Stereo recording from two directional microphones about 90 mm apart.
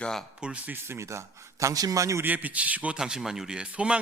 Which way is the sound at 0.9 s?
30° right (ahead or behind).